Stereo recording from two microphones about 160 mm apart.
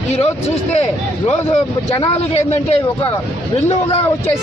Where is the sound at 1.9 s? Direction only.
35° left (ahead or behind).